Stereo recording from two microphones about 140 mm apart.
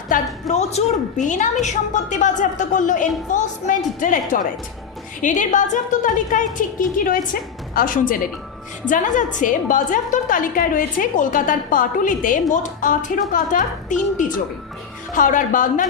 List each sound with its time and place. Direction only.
0.1 s a woman's voice: 70° left (ahead or behind)
0.4 s a woman's voice: 55° left (ahead or behind); by 8.2 s 80° left
8.9 s a woman's voice: 65° left (ahead or behind)
15.1 s a woman's voice: 70° left (ahead or behind)